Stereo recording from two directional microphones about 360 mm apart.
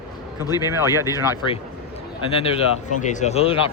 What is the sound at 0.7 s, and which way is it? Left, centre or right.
Speech, centre.